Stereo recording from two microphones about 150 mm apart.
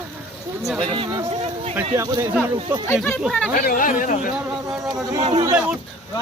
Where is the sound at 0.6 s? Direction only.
Centre (ahead or behind).